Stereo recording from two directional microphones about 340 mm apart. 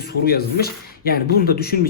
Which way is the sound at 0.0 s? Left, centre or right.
Left.